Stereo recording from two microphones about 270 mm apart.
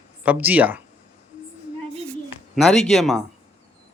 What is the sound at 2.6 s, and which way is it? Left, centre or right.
Speech, centre.